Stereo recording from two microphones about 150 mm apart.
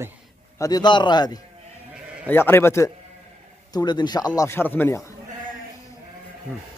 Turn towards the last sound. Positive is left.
turn(degrees=20)  # may be behind; listen again after turning